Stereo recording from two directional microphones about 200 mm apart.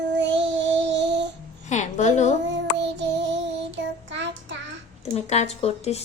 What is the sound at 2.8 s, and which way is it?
Child singing, 60° right (ahead or behind).